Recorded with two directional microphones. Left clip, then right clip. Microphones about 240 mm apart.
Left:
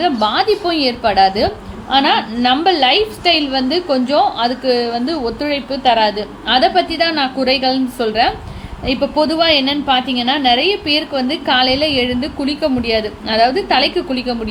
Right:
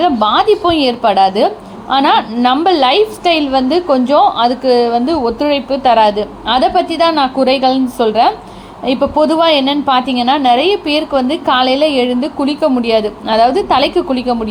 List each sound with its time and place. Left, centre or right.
0.0 s a woman's voice: centre